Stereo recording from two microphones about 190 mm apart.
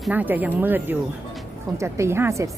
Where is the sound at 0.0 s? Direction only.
10° right (ahead or behind).